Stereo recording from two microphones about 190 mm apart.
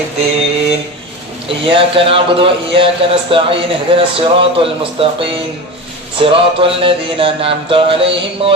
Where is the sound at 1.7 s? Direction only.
30° right (ahead or behind).